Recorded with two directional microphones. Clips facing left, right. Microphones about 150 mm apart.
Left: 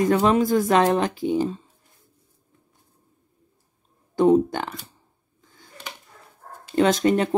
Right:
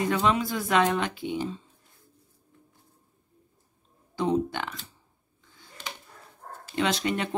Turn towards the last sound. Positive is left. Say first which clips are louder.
# left 8 dB
turn(degrees=40)  # may be behind; listen again after turning